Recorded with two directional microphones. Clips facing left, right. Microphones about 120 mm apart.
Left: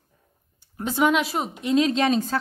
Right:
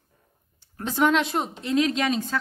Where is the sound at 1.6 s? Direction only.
20° left (ahead or behind).